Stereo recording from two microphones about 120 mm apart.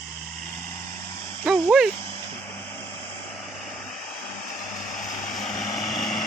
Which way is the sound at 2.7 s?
25° left (ahead or behind).